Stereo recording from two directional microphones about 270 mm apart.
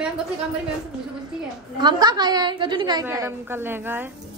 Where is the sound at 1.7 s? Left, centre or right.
Centre.